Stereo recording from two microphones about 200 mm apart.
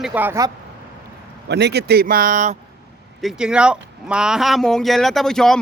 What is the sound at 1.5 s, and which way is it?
Speech, 55° right (ahead or behind).